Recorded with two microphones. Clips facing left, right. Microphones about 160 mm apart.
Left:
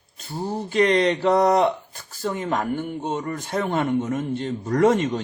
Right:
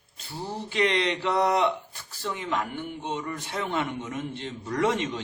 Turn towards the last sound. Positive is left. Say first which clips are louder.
# left 7 dB
turn(degrees=45)  # may be behind; listen again after turning